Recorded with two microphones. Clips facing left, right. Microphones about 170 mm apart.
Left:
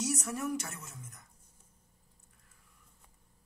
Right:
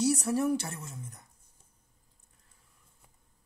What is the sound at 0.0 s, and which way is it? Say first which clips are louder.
A woman's voice: right 8 dB; 30° right (ahead or behind).